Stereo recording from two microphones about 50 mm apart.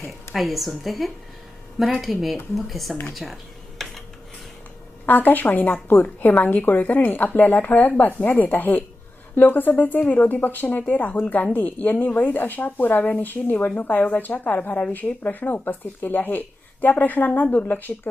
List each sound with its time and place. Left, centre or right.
0.3 s a woman's voice: centre
3.8 s a sound: centre
5.0 s a woman's voice: left